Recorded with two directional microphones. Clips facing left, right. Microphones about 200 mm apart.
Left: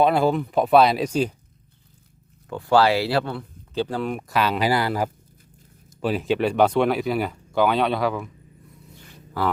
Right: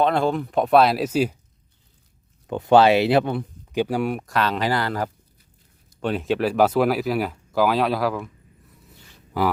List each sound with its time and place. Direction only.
0.0 s speech: 5° left (ahead or behind)
2.5 s speech: 20° right (ahead or behind)
4.2 s speech: 5° left (ahead or behind)
9.4 s speech: 15° right (ahead or behind)